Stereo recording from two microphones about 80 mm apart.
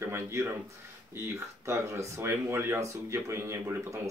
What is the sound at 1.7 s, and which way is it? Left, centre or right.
Speech, right.